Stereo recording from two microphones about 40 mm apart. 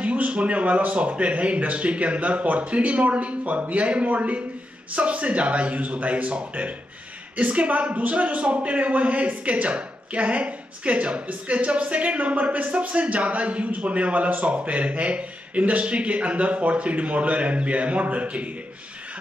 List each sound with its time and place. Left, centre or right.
0.0 s speech: right